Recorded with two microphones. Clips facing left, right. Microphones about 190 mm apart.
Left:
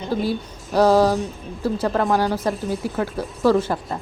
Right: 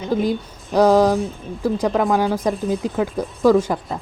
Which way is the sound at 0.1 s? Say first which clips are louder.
Right 3 dB; 15° right (ahead or behind).